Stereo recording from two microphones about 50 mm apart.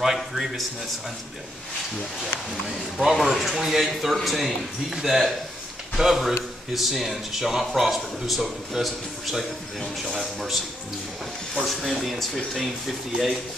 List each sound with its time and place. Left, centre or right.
0.0 s speech: centre
3.0 s a man's voice: centre
11.6 s speech: centre